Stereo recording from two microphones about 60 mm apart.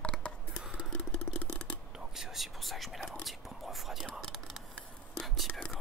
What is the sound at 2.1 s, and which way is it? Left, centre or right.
Whispering, centre.